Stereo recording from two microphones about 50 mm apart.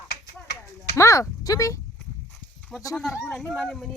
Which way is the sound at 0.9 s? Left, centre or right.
Left.